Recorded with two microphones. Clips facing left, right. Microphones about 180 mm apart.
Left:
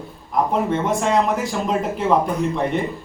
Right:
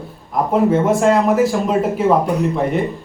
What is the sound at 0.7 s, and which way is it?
A man's voice, 5° right (ahead or behind).